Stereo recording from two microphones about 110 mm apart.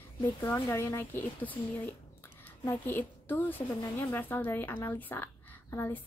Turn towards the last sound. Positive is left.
turn(degrees=20)  # may be behind; listen again after turning